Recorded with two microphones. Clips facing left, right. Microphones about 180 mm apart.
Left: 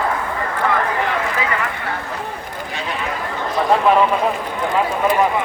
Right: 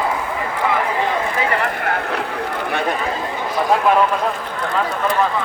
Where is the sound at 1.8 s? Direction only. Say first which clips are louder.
Right 5 dB; 65° right (ahead or behind).